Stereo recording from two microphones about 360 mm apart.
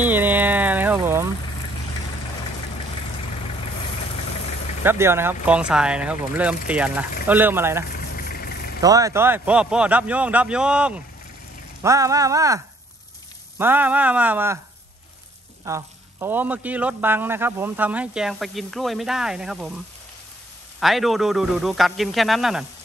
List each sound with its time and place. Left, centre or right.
0.0 s a sound: centre
4.8 s a man's voice: centre
7.9 s vehicle: left
8.8 s a man's voice: centre
15.6 s a man's voice: centre
20.8 s a man's voice: centre